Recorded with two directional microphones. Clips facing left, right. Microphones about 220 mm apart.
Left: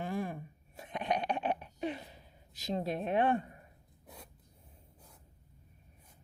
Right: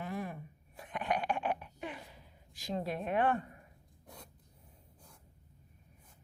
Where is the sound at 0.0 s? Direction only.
30° left (ahead or behind).